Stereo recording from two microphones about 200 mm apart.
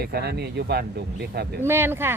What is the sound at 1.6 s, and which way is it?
Speech, 10° right (ahead or behind).